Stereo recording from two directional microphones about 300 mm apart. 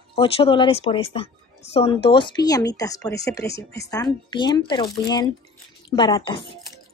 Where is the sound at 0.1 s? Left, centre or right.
Centre.